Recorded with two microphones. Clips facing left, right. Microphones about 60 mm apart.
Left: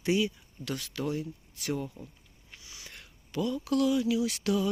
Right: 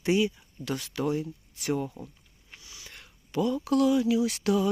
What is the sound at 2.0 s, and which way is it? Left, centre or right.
Speech, centre.